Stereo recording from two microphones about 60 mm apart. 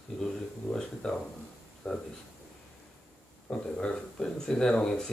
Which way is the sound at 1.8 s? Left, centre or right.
Left.